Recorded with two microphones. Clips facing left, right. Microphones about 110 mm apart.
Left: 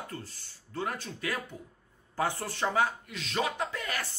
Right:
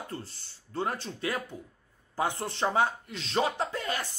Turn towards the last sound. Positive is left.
turn(degrees=-30)  # may be behind; listen again after turning